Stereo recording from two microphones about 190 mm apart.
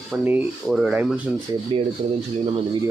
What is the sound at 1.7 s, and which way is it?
Speech, 30° right (ahead or behind).